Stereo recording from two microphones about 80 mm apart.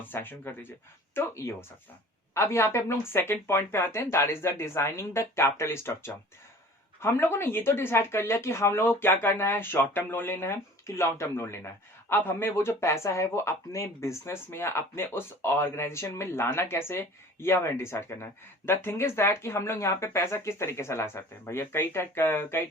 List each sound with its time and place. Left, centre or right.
0.0 s speech: left
1.1 s speech: left